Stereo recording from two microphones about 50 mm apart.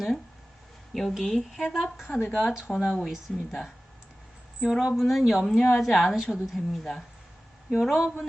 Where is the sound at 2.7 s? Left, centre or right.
Left.